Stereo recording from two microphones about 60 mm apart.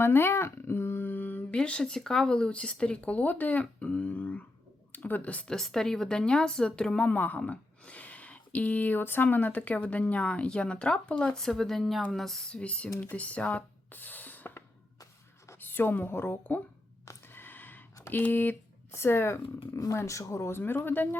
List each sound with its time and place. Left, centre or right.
0.0 s a sound: left
1.5 s speech: centre
5.5 s speech: centre
7.0 s speech: left; by 12.4 s centre
12.5 s speech: centre
13.1 s spray: left
15.5 s a woman's voice: left
17.2 s a sound: left
18.1 s speech: left
18.9 s speech: left
19.9 s speech: left
20.3 s speech: left